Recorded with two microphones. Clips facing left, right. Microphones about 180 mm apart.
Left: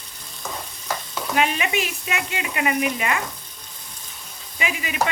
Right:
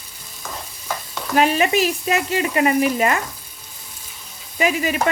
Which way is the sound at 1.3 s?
40° right (ahead or behind).